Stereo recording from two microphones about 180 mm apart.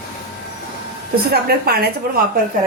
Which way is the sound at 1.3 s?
60° right (ahead or behind).